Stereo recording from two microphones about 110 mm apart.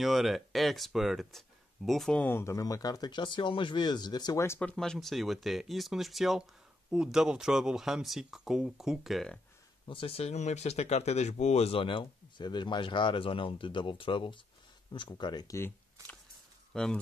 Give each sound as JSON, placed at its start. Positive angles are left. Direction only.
{"t": 0.0, "sound": "speech", "side_deg": 0}
{"t": 2.2, "sound": "speech", "side_deg": 25}
{"t": 4.6, "sound": "speech", "side_deg": 10}
{"t": 9.8, "sound": "speech", "side_deg": 55}
{"t": 16.7, "sound": "speech", "side_deg": 5}